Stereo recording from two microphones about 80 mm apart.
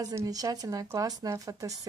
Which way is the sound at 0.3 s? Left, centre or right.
Right.